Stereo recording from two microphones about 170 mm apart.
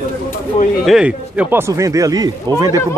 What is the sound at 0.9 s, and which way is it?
Speech, 5° right (ahead or behind).